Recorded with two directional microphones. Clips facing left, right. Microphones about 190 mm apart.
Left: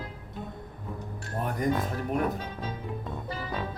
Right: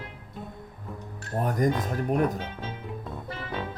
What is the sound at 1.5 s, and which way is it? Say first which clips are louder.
Speech: right 4 dB; 45° right (ahead or behind).